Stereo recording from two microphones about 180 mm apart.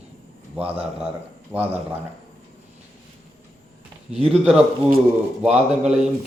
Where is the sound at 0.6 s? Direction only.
10° right (ahead or behind).